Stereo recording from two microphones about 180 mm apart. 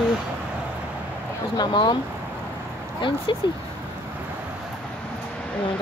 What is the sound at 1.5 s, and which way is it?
Speech, 25° left (ahead or behind).